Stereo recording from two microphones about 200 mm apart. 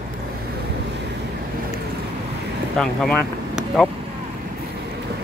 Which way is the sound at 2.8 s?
Centre (ahead or behind).